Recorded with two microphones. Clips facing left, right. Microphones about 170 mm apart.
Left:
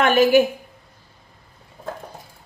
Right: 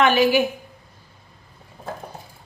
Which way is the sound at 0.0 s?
50° left (ahead or behind).